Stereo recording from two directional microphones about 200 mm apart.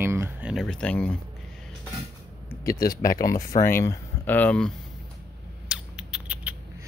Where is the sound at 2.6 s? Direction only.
15° left (ahead or behind).